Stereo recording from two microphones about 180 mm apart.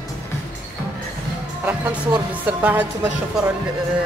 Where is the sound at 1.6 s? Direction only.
10° right (ahead or behind).